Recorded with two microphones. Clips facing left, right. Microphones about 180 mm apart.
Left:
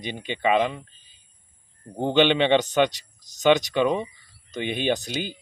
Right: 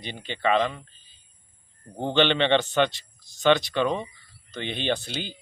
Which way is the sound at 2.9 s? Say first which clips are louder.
Left 3 dB; 40° left (ahead or behind).